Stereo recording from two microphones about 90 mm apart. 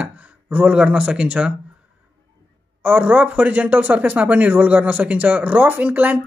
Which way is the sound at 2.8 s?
15° right (ahead or behind).